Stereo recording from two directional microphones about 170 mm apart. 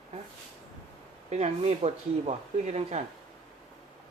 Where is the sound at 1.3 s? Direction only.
40° right (ahead or behind).